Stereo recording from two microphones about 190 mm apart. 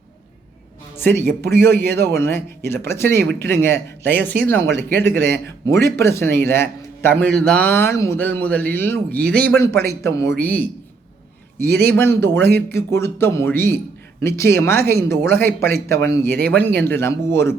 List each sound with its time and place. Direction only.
0.9 s a man's voice: 10° left (ahead or behind)
3.1 s speech: 65° right (ahead or behind)
3.3 s a man's voice: 10° left (ahead or behind)
4.7 s speech: 60° right (ahead or behind)
5.8 s a man's voice: 15° left (ahead or behind)
11.6 s speech: 55° right (ahead or behind)
11.9 s a man's voice: 10° left (ahead or behind)
16.2 s speech: 60° right (ahead or behind)
16.5 s a man's voice: 10° left (ahead or behind)